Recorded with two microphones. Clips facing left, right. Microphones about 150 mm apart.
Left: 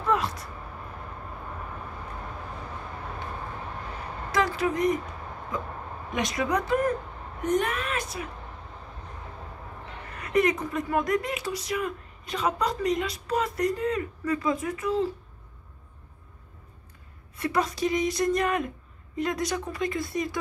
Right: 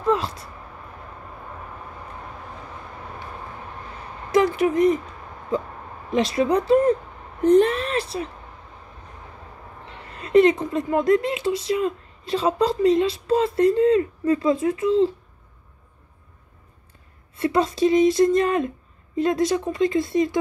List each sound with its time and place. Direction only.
0.1 s speech: 25° right (ahead or behind)
4.3 s speech: 25° right (ahead or behind)
6.1 s a woman's voice: 30° right (ahead or behind)
10.0 s speech: 25° right (ahead or behind)
17.4 s speech: 25° right (ahead or behind)